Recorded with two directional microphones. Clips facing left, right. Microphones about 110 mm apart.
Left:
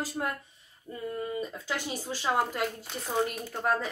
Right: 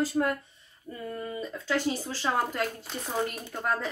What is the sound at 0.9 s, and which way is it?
Speech, 10° left (ahead or behind).